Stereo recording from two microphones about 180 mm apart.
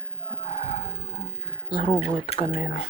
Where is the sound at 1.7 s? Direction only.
30° left (ahead or behind).